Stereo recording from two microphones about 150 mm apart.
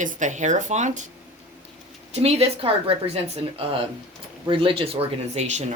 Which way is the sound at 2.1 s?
45° right (ahead or behind).